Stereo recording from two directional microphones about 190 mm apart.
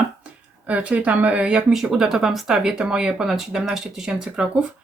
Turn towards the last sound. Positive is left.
turn(degrees=-5)  # may be behind; listen again after turning